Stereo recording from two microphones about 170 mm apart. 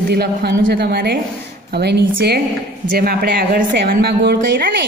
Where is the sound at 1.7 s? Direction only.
80° right.